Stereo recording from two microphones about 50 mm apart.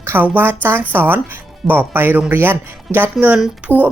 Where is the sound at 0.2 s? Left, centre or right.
Right.